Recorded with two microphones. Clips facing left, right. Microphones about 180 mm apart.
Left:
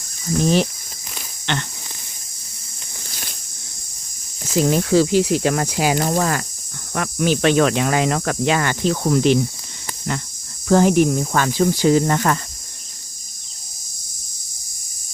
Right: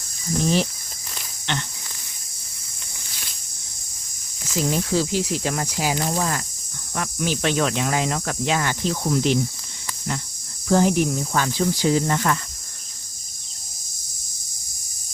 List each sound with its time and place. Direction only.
1.5 s speech: 70° left (ahead or behind)
4.5 s speech: 60° left (ahead or behind)
10.7 s speech: 65° left (ahead or behind); by 12.4 s 50° left (ahead or behind)